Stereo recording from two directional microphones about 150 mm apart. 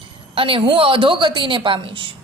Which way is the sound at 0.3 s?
35° right (ahead or behind).